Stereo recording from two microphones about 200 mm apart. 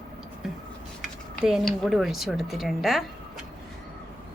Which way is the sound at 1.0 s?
Centre (ahead or behind).